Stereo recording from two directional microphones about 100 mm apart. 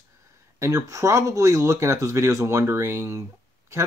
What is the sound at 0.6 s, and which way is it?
Speech, 35° right (ahead or behind).